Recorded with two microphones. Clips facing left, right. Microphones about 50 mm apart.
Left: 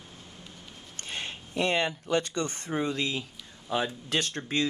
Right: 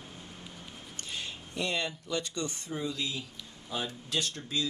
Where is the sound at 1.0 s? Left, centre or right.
Left.